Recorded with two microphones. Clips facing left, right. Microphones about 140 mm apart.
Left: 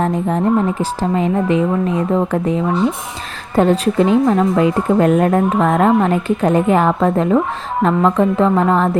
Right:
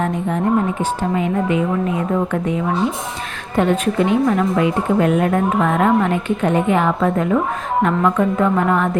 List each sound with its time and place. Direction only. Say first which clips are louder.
0.0 s a woman's voice: left 3 dB; 35° left (ahead or behind)